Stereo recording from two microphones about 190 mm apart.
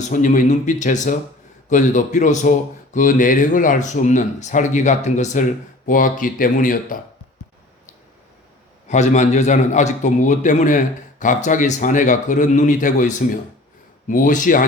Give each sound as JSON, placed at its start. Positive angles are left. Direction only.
{"t": 0.1, "sound": "a man's voice", "side_deg": 40}
{"t": 8.9, "sound": "a man's voice", "side_deg": 40}